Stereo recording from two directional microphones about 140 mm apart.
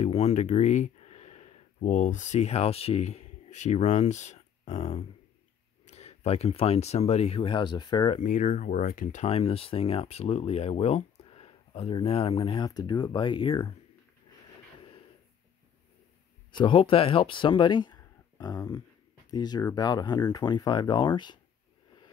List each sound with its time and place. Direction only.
0.0 s speech: 50° left (ahead or behind); by 8.2 s 30° left (ahead or behind)
8.2 s speech: 65° left (ahead or behind)
9.2 s speech: 45° left (ahead or behind)
16.5 s speech: 35° left (ahead or behind)